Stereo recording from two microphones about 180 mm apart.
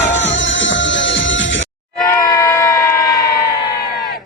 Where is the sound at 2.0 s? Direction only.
20° left (ahead or behind).